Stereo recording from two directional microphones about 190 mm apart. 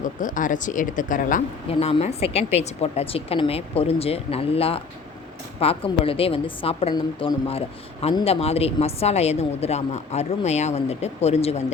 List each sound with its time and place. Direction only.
0.0 s speech: 45° left (ahead or behind)
1.8 s a woman's voice: 35° left (ahead or behind)